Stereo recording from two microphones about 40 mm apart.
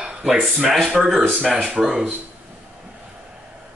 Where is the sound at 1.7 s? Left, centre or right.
Centre.